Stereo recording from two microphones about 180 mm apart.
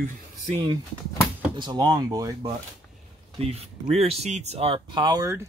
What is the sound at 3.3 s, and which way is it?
Speech, 35° right (ahead or behind).